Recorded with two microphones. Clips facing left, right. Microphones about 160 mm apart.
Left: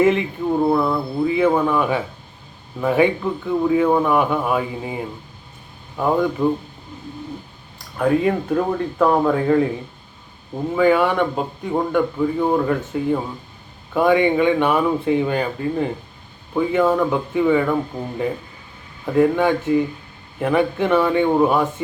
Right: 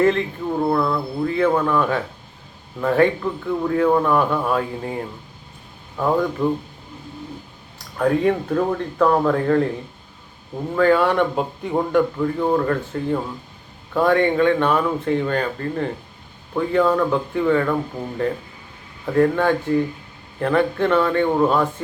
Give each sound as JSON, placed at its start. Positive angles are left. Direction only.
{"t": 0.0, "sound": "a man's voice", "side_deg": 10}
{"t": 7.9, "sound": "speech", "side_deg": 5}
{"t": 10.8, "sound": "a man's voice", "side_deg": 5}
{"t": 18.0, "sound": "a man's voice", "side_deg": -5}